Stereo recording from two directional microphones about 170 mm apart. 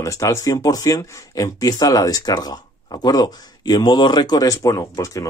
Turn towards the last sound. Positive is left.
turn(degrees=20)  # may be behind; listen again after turning